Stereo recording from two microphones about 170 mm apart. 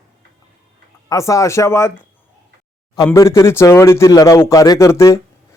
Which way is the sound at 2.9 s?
20° left (ahead or behind).